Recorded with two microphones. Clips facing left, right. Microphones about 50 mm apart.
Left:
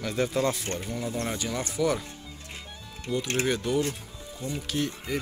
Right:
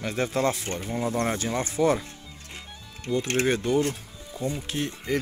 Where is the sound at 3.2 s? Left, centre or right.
Right.